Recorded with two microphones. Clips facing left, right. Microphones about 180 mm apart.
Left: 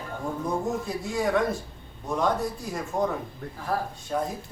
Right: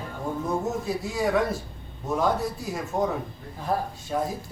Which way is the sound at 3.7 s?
20° right (ahead or behind).